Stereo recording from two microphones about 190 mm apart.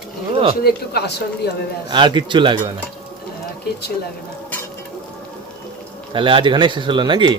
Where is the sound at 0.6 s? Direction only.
60° left (ahead or behind).